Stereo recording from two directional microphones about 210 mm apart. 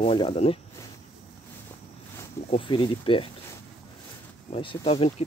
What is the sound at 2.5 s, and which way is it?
Speech, 25° left (ahead or behind).